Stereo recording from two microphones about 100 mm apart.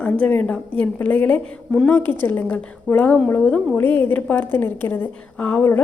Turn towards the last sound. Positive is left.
turn(degrees=20)  # may be behind; listen again after turning